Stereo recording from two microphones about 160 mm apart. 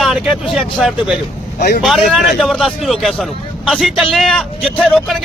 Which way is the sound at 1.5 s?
80° left.